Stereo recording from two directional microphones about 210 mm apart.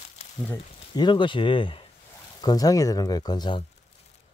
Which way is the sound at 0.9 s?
20° left (ahead or behind).